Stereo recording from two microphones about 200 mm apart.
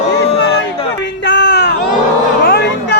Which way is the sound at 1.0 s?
60° left (ahead or behind).